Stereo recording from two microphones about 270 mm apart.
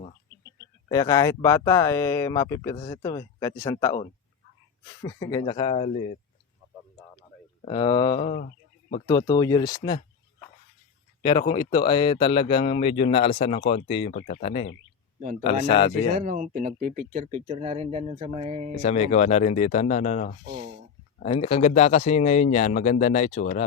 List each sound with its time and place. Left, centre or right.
0.9 s speech: centre
7.6 s speech: centre
11.2 s speech: centre
16.1 s speech: right
18.8 s speech: left
20.4 s speech: centre
21.2 s speech: left